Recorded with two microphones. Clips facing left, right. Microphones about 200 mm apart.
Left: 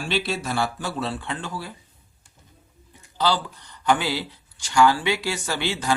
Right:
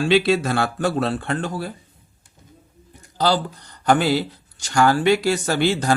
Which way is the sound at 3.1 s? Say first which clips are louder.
Right 3 dB; 40° right (ahead or behind).